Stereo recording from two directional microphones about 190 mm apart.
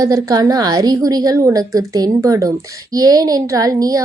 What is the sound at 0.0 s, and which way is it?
A woman's voice, 20° right (ahead or behind).